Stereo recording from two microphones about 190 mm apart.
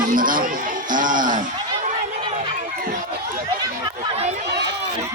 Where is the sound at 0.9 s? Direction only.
45° right (ahead or behind).